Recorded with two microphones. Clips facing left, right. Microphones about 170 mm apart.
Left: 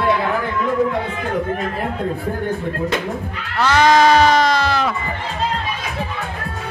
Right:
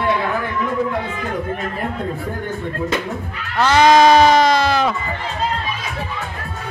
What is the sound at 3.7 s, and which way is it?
Sheep, 20° right (ahead or behind).